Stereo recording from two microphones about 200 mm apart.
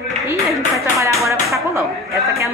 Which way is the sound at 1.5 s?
15° right (ahead or behind).